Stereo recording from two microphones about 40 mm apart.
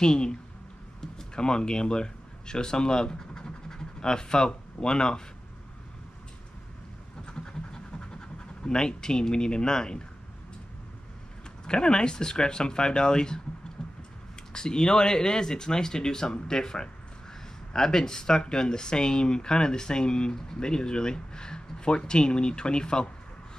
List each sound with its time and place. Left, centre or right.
0.0 s speech: centre
7.2 s pant: centre
11.6 s speech: left
13.8 s vehicle: centre
14.5 s speech: centre